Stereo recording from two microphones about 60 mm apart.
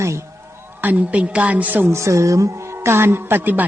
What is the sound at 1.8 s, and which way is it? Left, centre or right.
A woman's voice, right.